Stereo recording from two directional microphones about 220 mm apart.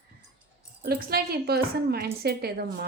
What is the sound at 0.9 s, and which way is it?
A woman's voice, 45° right (ahead or behind).